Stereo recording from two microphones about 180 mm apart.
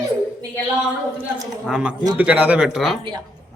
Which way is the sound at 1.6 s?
5° right (ahead or behind).